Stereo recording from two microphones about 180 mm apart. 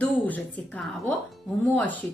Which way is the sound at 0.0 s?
10° left (ahead or behind).